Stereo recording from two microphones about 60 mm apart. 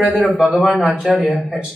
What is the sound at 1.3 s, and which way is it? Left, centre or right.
Speech, centre.